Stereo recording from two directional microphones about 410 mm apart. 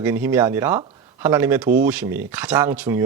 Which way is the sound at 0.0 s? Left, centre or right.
Centre.